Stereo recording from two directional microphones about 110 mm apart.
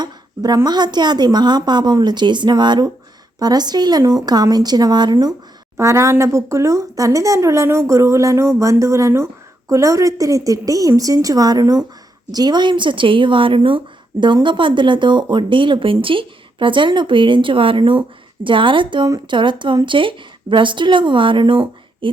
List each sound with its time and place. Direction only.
0.0 s a woman's voice: 40° right (ahead or behind)
5.7 s speech: 25° right (ahead or behind); by 22.1 s 50° right (ahead or behind)